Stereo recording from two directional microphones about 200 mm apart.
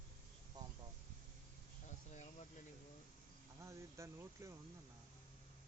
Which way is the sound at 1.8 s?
35° left (ahead or behind).